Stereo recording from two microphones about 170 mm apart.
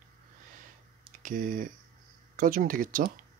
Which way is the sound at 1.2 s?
55° right (ahead or behind).